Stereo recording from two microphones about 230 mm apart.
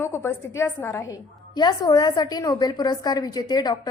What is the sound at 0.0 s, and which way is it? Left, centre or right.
A woman's voice, centre.